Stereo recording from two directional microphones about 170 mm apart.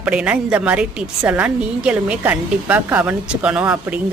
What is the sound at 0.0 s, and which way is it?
A woman's voice, 5° right (ahead or behind).